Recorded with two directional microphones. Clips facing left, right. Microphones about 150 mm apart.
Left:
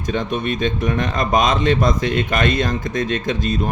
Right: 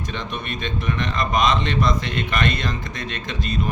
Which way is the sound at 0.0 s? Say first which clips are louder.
Left 8 dB; 50° left (ahead or behind).